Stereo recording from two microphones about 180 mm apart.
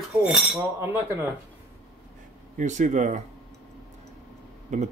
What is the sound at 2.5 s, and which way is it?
Speech, 45° right (ahead or behind).